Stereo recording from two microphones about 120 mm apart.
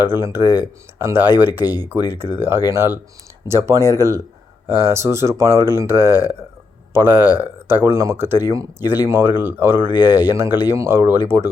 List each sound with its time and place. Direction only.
0.0 s speech: 20° right (ahead or behind)